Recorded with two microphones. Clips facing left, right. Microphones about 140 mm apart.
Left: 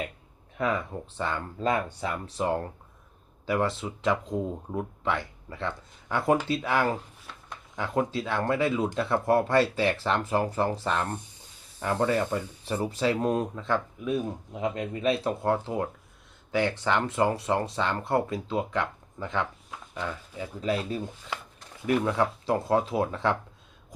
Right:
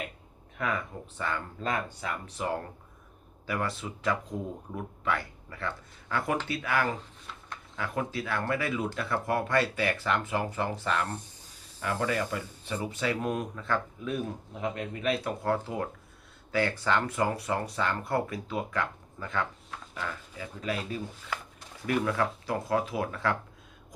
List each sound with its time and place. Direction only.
0.6 s speech: 25° left (ahead or behind)
13.6 s speech: 15° left (ahead or behind)